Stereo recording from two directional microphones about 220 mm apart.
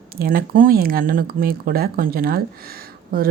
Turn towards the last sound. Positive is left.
turn(degrees=-40)  # may be behind; listen again after turning